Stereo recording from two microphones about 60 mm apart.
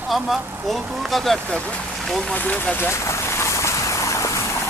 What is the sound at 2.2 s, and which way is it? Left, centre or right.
Speech, left.